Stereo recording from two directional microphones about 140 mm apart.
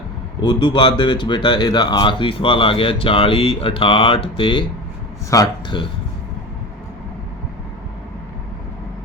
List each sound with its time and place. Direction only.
0.4 s speech: 35° left (ahead or behind)